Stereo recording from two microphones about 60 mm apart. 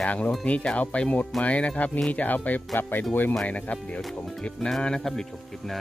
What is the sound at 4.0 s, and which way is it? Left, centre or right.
Speech, centre.